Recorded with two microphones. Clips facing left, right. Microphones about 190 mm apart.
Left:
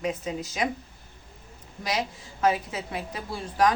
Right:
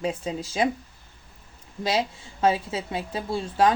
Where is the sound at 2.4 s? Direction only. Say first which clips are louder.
Right 2 dB; 30° right (ahead or behind).